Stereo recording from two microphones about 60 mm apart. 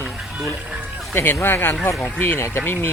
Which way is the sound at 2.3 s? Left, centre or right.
Left.